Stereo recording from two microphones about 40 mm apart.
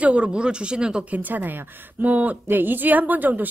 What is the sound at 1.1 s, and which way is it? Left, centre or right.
A woman's voice, right.